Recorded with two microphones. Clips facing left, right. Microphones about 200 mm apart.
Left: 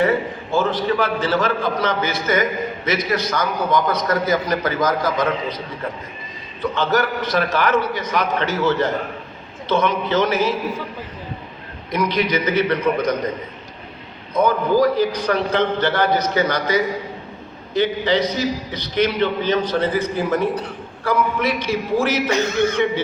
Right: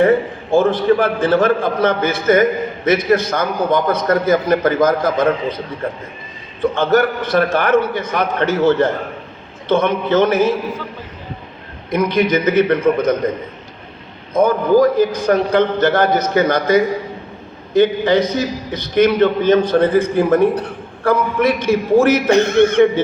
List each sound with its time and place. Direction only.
0.0 s a man's voice: 50° right (ahead or behind)
11.9 s a man's voice: 50° right (ahead or behind)
14.3 s a man's voice: 45° right (ahead or behind)